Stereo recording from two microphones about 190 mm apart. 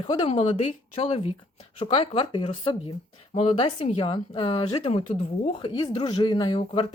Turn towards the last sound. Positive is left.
turn(degrees=25)  # may be behind; listen again after turning